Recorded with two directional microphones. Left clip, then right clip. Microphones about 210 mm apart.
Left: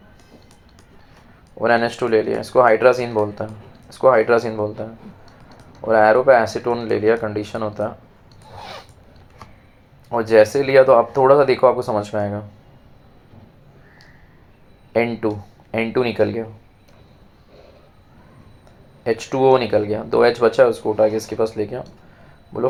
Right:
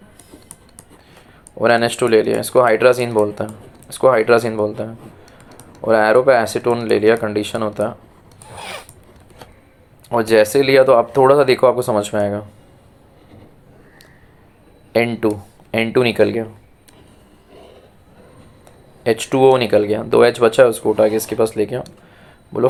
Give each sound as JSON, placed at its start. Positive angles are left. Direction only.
{"t": 1.5, "sound": "speech", "side_deg": -35}
{"t": 8.4, "sound": "zipper", "side_deg": -30}
{"t": 10.1, "sound": "speech", "side_deg": -35}
{"t": 14.9, "sound": "speech", "side_deg": -35}
{"t": 19.0, "sound": "speech", "side_deg": -35}